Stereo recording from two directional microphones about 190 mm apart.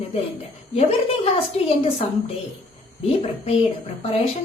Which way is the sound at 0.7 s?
30° left (ahead or behind).